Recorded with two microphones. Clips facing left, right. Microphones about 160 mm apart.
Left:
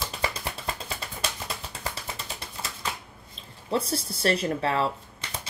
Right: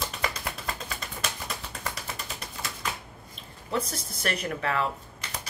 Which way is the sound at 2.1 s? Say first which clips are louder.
Even; 30° left (ahead or behind).